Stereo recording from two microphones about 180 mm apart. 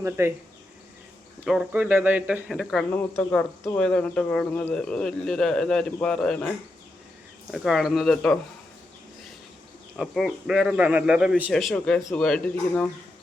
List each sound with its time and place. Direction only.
0.0 s speech: 15° right (ahead or behind)
1.5 s speech: 5° right (ahead or behind)
2.9 s speech: 10° left (ahead or behind)
7.5 s speech: centre (ahead or behind)
10.0 s speech: centre (ahead or behind)